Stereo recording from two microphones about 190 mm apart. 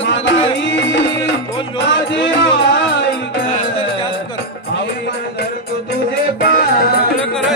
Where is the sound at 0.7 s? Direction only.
70° left (ahead or behind).